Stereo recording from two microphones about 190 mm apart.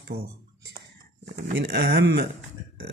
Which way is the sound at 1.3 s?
55° right (ahead or behind).